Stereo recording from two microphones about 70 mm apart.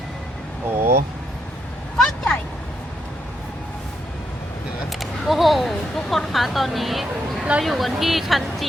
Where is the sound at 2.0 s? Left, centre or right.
Centre.